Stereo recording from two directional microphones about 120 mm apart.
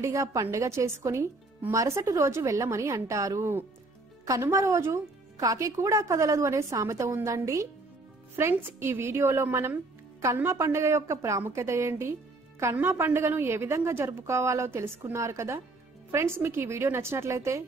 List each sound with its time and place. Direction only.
0.0 s a woman's voice: 25° right (ahead or behind)